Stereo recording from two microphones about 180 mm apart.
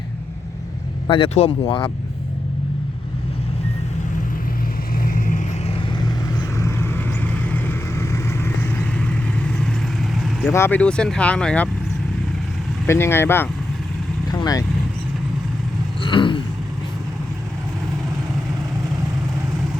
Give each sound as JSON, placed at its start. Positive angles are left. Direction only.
{"t": 1.0, "sound": "speech", "side_deg": 30}
{"t": 5.0, "sound": "vehicle", "side_deg": 50}
{"t": 6.6, "sound": "vehicle", "side_deg": 15}
{"t": 10.5, "sound": "speech", "side_deg": 10}
{"t": 12.8, "sound": "speech", "side_deg": 15}
{"t": 16.0, "sound": "a sound", "side_deg": 25}